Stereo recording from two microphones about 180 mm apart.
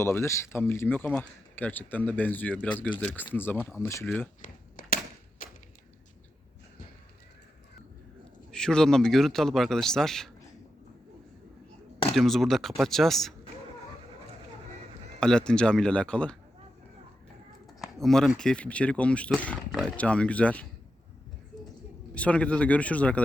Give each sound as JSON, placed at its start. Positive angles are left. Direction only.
{"t": 0.0, "sound": "speech", "side_deg": 15}
{"t": 4.4, "sound": "cap gun", "side_deg": 50}
{"t": 5.4, "sound": "thump", "side_deg": 50}
{"t": 8.5, "sound": "speech", "side_deg": 5}
{"t": 12.1, "sound": "speech", "side_deg": 0}
{"t": 15.2, "sound": "speech", "side_deg": 5}
{"t": 17.7, "sound": "speech", "side_deg": 0}
{"t": 22.1, "sound": "speech", "side_deg": 5}